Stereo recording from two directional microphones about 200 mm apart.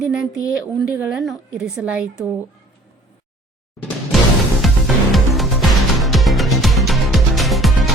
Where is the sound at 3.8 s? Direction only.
5° left (ahead or behind).